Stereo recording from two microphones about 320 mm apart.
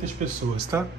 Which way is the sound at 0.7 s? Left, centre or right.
Centre.